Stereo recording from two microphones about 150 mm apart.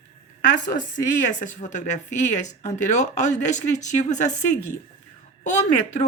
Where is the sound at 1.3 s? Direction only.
55° left (ahead or behind).